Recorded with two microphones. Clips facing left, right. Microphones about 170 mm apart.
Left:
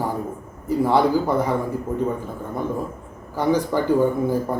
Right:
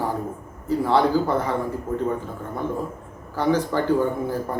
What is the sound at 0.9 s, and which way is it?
Speech, 15° left (ahead or behind).